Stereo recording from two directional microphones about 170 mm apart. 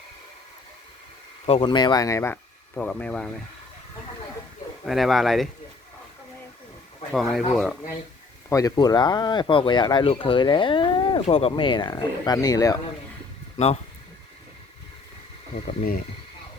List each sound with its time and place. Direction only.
1.5 s speech: 30° left (ahead or behind); by 3.2 s 5° left (ahead or behind)
4.9 s speech: centre (ahead or behind)
7.1 s speech: centre (ahead or behind)
8.4 s speech: 20° left (ahead or behind)
13.6 s speech: 40° left (ahead or behind)
15.6 s speech: 60° left (ahead or behind)